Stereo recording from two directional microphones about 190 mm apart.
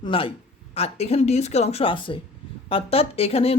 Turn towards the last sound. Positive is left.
turn(degrees=30)  # may be behind; listen again after turning